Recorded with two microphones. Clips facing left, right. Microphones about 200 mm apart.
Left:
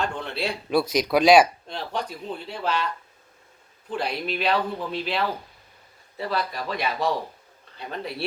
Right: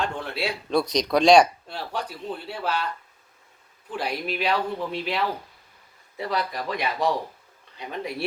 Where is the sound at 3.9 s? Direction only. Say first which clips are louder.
Left 1 dB; 10° right (ahead or behind).